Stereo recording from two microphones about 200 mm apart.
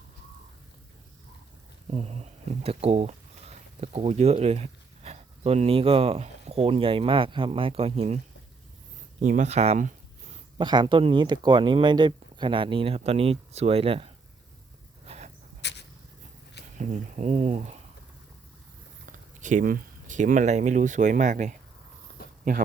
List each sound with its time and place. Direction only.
1.9 s speech: 35° right (ahead or behind)
9.2 s speech: 35° right (ahead or behind)
10.6 s speech: 20° right (ahead or behind)
15.0 s a sound: 35° right (ahead or behind)
16.7 s speech: 35° right (ahead or behind)
19.0 s speech: 40° right (ahead or behind)
22.2 s a sound: 50° left (ahead or behind)